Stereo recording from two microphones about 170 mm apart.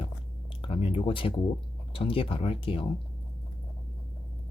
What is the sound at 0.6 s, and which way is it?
Speech, 35° left (ahead or behind).